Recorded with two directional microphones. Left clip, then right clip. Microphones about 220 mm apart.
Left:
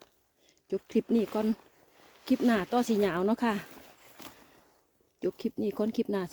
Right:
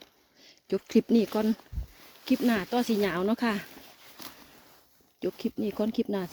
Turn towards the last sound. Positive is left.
turn(degrees=-5)  # may be behind; listen again after turning